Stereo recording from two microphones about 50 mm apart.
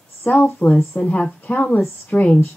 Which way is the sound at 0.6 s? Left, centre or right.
Left.